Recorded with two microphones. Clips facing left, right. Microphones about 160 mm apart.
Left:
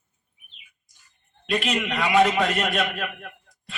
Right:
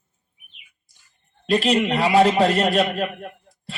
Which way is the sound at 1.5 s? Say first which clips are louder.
Right 6 dB; 35° right (ahead or behind).